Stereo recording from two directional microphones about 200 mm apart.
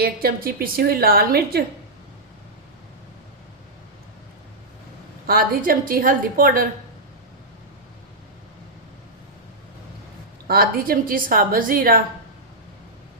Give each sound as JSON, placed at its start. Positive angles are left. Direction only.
{"t": 0.0, "sound": "a woman's voice", "side_deg": -50}
{"t": 5.2, "sound": "a woman's voice", "side_deg": -45}
{"t": 10.4, "sound": "a woman's voice", "side_deg": -50}